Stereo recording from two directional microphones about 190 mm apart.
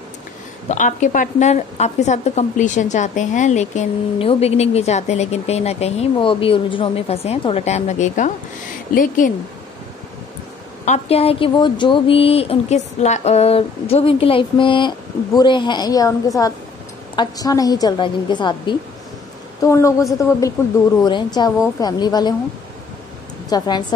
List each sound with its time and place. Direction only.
0.7 s a woman's voice: 40° left (ahead or behind)
10.9 s a woman's voice: 30° left (ahead or behind)
23.5 s a woman's voice: 20° left (ahead or behind)